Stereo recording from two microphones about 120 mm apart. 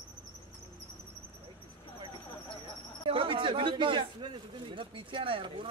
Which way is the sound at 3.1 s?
45° right (ahead or behind).